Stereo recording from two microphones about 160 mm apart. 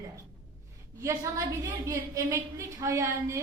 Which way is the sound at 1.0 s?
20° right (ahead or behind).